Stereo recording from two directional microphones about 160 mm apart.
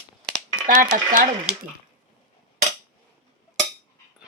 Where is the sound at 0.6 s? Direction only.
55° right (ahead or behind).